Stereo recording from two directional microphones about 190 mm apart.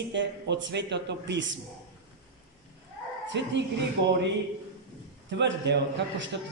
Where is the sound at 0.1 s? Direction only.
70° right (ahead or behind).